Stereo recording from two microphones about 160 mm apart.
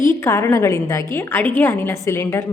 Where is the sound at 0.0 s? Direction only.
15° left (ahead or behind).